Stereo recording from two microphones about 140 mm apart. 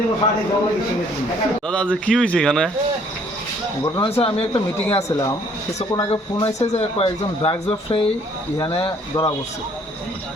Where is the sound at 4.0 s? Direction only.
45° left (ahead or behind).